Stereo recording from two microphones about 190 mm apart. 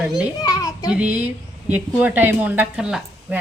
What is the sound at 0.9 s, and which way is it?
A woman's voice, 5° right (ahead or behind).